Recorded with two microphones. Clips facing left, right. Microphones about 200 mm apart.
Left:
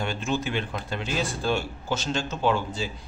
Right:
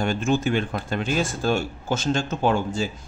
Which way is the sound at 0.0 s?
45° right (ahead or behind).